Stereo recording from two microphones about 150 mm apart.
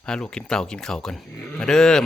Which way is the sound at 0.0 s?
5° left (ahead or behind).